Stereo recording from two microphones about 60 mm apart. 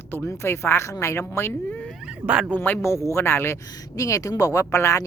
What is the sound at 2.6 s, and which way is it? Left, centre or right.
Speech, left.